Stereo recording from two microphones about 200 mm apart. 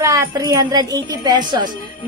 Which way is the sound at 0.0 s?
15° right (ahead or behind).